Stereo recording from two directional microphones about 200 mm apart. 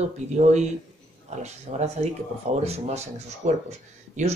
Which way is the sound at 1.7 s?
35° right (ahead or behind).